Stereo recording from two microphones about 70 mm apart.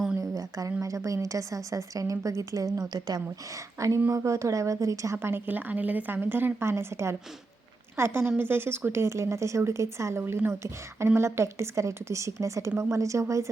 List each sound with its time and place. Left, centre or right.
0.2 s a woman's voice: right
3.8 s speech: right
5.1 s a woman's voice: right